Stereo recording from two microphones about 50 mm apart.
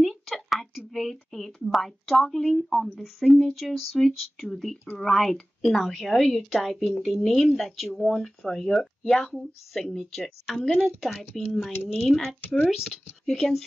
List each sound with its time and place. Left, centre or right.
0.0 s speech: centre
11.7 s speech: left
12.0 s speech: centre